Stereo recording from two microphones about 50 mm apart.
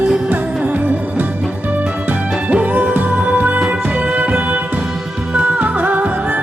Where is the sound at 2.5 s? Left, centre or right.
Right.